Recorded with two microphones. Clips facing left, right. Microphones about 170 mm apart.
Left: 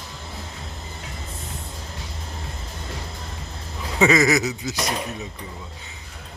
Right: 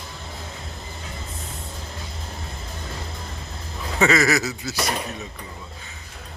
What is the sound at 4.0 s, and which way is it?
Speech, 20° left (ahead or behind).